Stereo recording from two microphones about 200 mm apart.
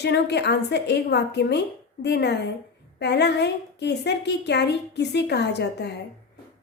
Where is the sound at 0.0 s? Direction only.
55° left (ahead or behind).